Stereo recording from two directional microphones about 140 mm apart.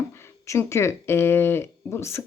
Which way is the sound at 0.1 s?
20° left (ahead or behind).